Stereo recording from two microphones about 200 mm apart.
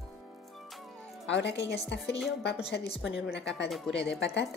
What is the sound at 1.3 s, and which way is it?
Speech, 60° left (ahead or behind).